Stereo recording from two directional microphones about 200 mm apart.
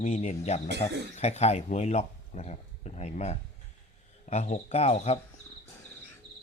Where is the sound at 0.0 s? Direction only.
35° left (ahead or behind).